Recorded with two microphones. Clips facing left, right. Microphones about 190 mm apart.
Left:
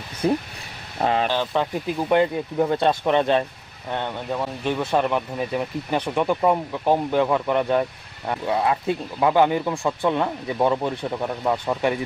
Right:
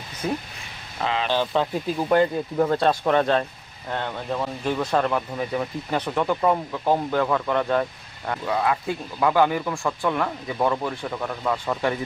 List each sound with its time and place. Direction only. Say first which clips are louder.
0.2 s speech: left 6 dB; 30° left (ahead or behind)
0.9 s speech: left 4 dB; 45° left (ahead or behind)
2.0 s speech: even; 5° left (ahead or behind)
3.0 s speech: left 1 dB; 20° left (ahead or behind)
3.9 s speech: left 1 dB; 5° left (ahead or behind)